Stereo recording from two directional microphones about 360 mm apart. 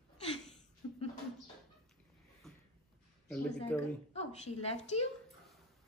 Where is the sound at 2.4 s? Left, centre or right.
Centre.